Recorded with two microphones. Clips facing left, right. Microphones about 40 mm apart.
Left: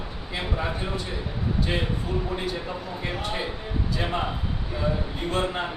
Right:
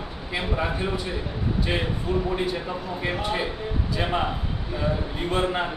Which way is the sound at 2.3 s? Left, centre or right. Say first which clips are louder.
Right 3 dB; centre.